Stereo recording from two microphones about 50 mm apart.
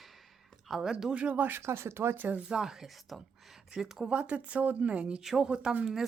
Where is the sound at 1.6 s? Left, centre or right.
Right.